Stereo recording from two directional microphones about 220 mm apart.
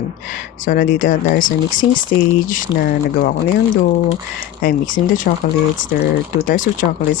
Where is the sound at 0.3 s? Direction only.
40° left (ahead or behind).